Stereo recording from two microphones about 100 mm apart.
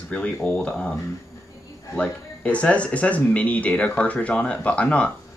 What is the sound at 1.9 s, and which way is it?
Speech, 15° left (ahead or behind).